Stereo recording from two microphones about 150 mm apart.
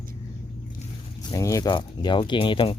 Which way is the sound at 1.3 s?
20° left (ahead or behind).